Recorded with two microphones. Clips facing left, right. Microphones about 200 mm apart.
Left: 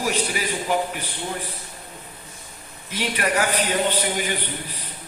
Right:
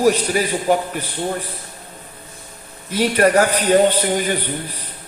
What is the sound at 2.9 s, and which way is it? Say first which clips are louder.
A man's voice: right 9 dB; 45° right (ahead or behind).